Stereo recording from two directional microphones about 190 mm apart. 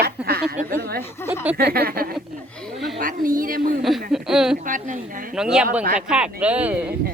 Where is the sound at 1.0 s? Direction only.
15° left (ahead or behind).